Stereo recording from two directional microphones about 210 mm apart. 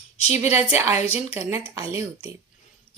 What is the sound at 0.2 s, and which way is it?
Speech, 30° left (ahead or behind).